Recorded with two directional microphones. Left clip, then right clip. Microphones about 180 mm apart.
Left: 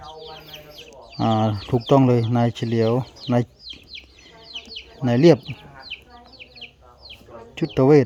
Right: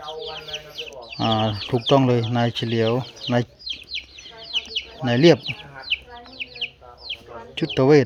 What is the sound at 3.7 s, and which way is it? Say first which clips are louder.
Chicken: right 7 dB; 60° left (ahead or behind).